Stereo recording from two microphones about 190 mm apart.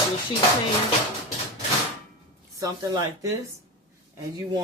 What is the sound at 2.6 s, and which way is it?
Speech, 20° right (ahead or behind).